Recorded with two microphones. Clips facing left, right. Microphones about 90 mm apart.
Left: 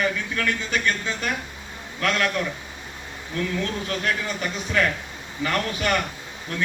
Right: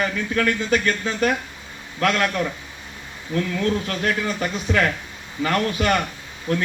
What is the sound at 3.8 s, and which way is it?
A man's voice, 40° right (ahead or behind).